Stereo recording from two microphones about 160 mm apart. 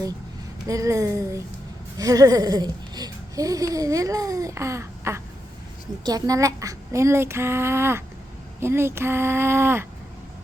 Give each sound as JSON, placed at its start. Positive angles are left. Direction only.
{"t": 0.7, "sound": "a child's voice", "side_deg": -20}